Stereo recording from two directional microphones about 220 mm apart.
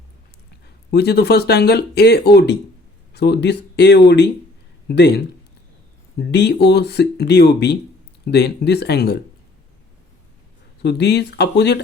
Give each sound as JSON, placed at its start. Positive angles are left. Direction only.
{"t": 0.9, "sound": "speech", "side_deg": 50}
{"t": 10.8, "sound": "speech", "side_deg": 50}